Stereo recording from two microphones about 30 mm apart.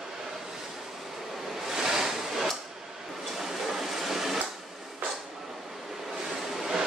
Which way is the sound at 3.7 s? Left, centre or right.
Centre.